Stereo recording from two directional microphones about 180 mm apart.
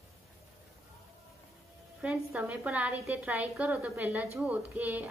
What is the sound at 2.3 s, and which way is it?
A woman's voice, 5° right (ahead or behind).